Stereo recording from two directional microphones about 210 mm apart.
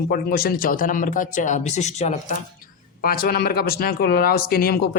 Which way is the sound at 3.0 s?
45° left (ahead or behind).